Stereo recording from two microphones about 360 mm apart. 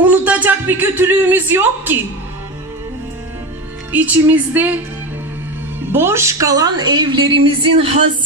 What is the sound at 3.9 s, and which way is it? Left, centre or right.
Speech, centre.